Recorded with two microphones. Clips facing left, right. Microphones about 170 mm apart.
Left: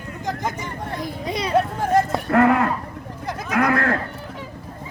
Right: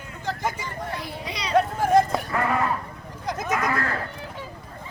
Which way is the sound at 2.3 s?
65° left (ahead or behind).